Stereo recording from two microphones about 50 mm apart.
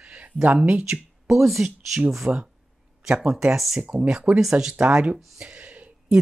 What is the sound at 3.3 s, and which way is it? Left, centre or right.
Speech, centre.